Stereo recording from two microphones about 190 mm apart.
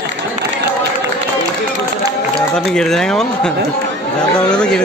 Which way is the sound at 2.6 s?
5° left (ahead or behind).